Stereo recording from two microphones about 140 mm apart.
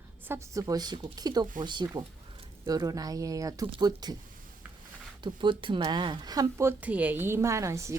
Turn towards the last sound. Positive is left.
turn(degrees=-20)  # may be behind; listen again after turning